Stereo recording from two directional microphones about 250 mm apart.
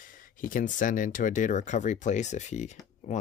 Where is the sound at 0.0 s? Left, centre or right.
Left.